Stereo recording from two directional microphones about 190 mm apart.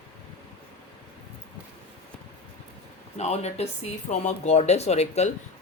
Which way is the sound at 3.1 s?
35° left (ahead or behind).